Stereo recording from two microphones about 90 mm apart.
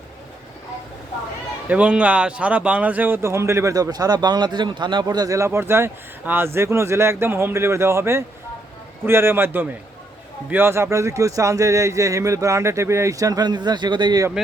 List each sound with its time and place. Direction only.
1.7 s speech: 15° right (ahead or behind); by 14.2 s 55° right (ahead or behind)
14.4 s speech: 5° right (ahead or behind)